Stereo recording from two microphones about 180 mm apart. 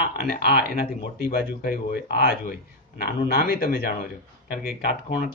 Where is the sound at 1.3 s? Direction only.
55° left (ahead or behind).